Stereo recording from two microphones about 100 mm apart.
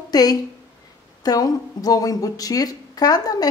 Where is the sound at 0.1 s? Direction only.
40° left (ahead or behind).